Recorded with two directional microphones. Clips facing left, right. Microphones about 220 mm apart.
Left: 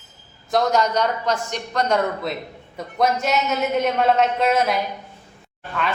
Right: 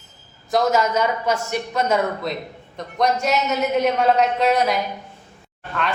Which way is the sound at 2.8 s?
5° left (ahead or behind).